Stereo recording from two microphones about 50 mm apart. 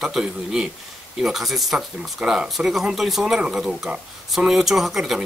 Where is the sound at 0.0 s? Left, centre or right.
Centre.